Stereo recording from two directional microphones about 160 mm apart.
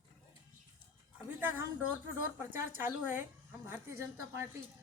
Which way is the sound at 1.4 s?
10° right (ahead or behind).